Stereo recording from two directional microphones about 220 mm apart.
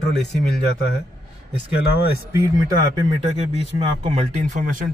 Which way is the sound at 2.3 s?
15° right (ahead or behind).